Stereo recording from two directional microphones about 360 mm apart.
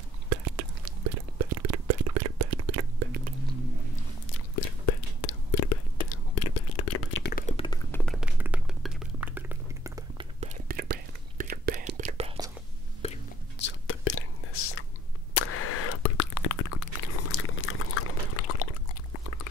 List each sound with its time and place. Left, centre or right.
0.3 s whispering: right
4.3 s whispering: left; by 12.4 s centre
13.0 s whispering: centre
13.6 s whispering: left
15.3 s a sound: left
17.3 s liquid: left